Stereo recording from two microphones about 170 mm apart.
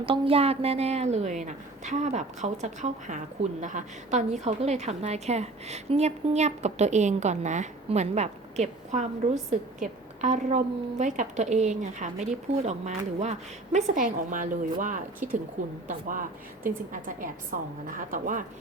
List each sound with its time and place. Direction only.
0.0 s a woman's voice: 35° right (ahead or behind); by 18.4 s 50° right (ahead or behind)